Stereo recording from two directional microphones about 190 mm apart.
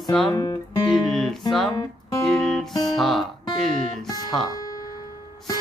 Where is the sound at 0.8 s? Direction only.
Centre (ahead or behind).